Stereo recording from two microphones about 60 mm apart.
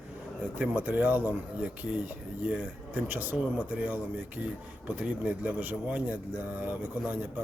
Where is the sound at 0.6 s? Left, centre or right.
Right.